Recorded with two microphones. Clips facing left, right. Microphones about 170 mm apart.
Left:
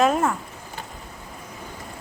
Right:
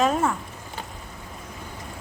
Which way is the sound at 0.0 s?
5° left (ahead or behind).